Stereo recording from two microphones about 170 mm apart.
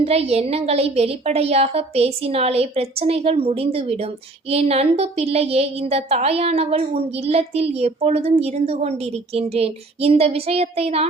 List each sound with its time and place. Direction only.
0.0 s a woman's voice: 35° right (ahead or behind)